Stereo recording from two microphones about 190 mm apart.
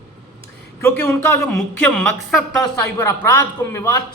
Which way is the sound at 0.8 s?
10° left (ahead or behind).